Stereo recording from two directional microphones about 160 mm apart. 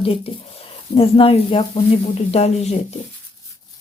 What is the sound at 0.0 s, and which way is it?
Speech, 35° left (ahead or behind).